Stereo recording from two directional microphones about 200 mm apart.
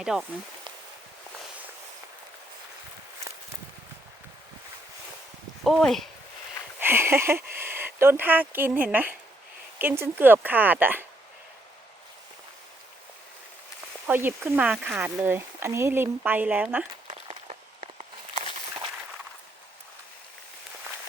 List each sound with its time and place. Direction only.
0.0 s speech: 5° right (ahead or behind)
5.6 s speech: centre (ahead or behind)
6.7 s speech: 10° right (ahead or behind)
14.1 s speech: 10° right (ahead or behind)
17.1 s a sound: 30° right (ahead or behind)